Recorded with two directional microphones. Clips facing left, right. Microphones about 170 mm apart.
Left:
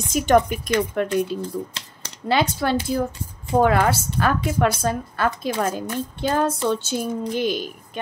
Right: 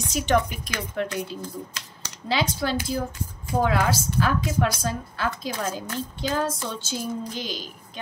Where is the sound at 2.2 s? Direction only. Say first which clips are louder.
Left 5 dB; 55° left (ahead or behind).